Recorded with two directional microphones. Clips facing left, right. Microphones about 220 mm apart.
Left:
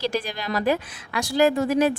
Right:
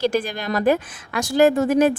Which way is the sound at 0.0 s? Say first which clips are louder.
Right 5 dB; 50° right (ahead or behind).